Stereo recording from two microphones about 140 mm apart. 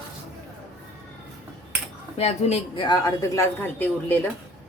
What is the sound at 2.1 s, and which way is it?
Speech, 45° left (ahead or behind).